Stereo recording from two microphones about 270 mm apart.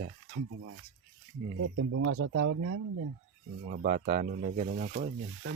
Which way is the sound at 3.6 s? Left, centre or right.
Right.